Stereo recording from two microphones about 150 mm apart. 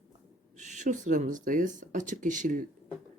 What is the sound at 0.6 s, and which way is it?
Speech, 55° right (ahead or behind).